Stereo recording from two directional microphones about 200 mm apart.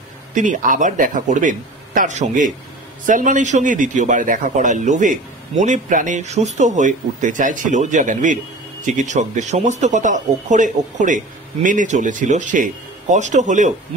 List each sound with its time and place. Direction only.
0.3 s a man's voice: 40° right (ahead or behind)